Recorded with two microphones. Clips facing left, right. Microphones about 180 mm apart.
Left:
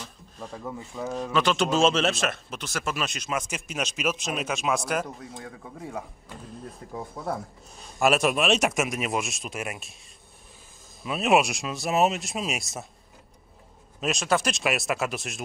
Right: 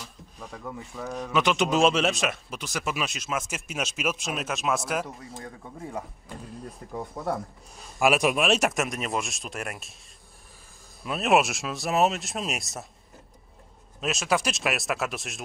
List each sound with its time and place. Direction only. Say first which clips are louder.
0.0 s speech: left 2 dB; centre (ahead or behind)
11.0 s speech: left 1 dB; centre (ahead or behind)
13.9 s speech: left 1 dB; centre (ahead or behind)